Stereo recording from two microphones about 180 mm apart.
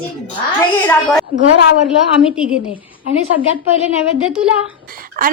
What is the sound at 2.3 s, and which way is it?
Speech, 5° right (ahead or behind).